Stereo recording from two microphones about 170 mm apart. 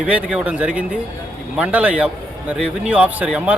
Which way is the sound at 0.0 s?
5° right (ahead or behind).